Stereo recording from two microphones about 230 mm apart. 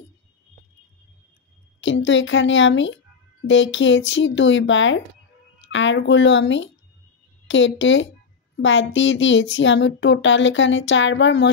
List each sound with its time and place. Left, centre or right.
1.8 s speech: left